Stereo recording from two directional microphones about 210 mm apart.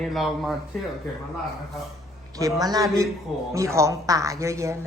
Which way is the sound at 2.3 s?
15° right (ahead or behind).